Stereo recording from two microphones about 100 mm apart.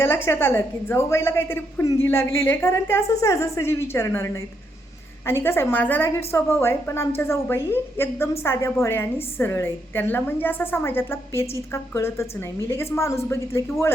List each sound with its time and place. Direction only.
0.0 s a woman's voice: 25° left (ahead or behind)